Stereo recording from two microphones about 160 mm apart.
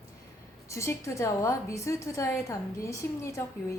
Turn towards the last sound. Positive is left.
turn(degrees=20)  # may be behind; listen again after turning